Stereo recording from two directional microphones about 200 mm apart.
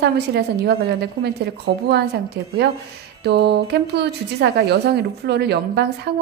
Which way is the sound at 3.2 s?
55° right (ahead or behind).